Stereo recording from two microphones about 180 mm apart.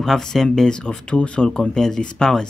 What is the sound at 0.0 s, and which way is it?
Speech, centre (ahead or behind).